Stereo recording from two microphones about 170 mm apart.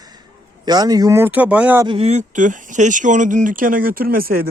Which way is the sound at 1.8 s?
35° right (ahead or behind).